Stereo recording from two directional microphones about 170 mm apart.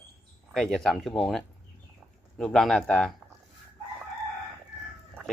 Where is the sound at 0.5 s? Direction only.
Centre (ahead or behind).